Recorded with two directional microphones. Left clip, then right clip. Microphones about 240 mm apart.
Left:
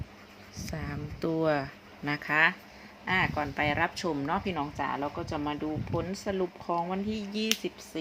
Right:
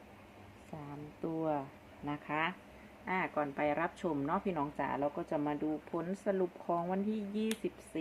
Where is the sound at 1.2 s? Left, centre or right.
Left.